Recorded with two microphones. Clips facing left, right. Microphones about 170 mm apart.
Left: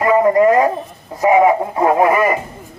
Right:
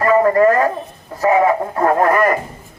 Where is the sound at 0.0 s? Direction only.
15° left (ahead or behind).